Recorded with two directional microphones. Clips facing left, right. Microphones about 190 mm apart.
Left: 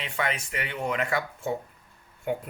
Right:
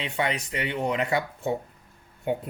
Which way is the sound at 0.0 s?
30° right (ahead or behind).